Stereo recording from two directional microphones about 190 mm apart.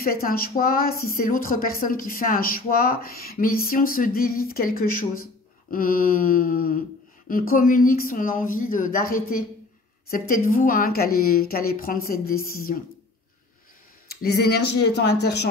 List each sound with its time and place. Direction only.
0.0 s a woman's voice: 50° left (ahead or behind)
14.0 s speech: 55° left (ahead or behind)